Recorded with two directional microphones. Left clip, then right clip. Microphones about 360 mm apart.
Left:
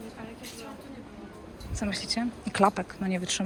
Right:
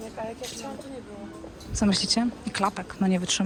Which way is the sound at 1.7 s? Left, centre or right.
Centre.